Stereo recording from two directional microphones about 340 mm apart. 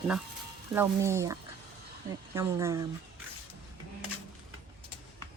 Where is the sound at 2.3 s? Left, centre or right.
Centre.